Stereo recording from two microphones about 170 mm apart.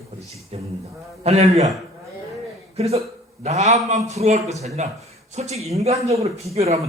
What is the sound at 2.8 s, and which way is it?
Speech, 35° right (ahead or behind).